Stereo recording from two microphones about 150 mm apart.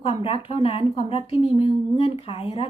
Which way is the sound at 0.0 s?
40° left (ahead or behind).